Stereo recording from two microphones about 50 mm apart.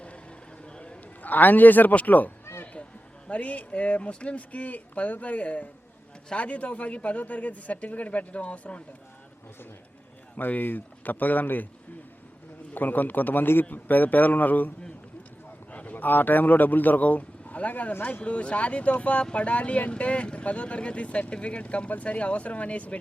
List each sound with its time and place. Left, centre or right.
0.0 s a sound: left
1.2 s a man's voice: left
10.3 s a man's voice: left
12.7 s a man's voice: left
15.7 s a man's voice: left